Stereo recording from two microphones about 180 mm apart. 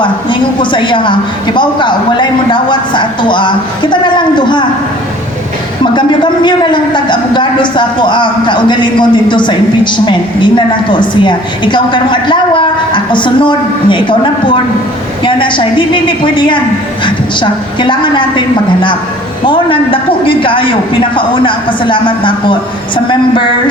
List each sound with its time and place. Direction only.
0.0 s a man's voice: 25° left (ahead or behind)
5.8 s a man's voice: 25° left (ahead or behind)